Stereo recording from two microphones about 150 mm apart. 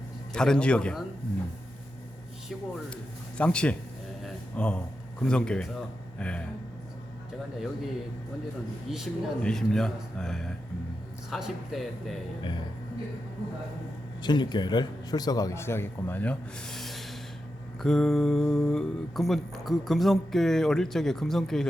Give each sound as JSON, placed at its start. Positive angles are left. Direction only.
{"t": 0.3, "sound": "speech", "side_deg": 5}
{"t": 2.9, "sound": "a man's voice", "side_deg": 5}
{"t": 4.2, "sound": "a sound", "side_deg": 5}
{"t": 5.2, "sound": "a man's voice", "side_deg": 5}
{"t": 8.9, "sound": "speech", "side_deg": 0}
{"t": 14.2, "sound": "a man's voice", "side_deg": 30}